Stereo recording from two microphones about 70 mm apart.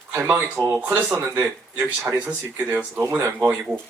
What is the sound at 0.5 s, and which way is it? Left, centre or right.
Speech, right.